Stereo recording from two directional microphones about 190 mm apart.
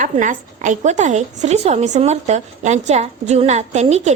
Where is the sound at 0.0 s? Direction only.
40° right (ahead or behind).